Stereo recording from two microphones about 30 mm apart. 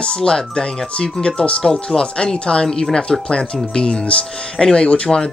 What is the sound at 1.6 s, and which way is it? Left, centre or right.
Speech, left.